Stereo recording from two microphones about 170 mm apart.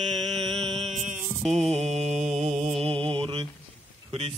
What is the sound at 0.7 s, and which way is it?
Mantra, 40° right (ahead or behind).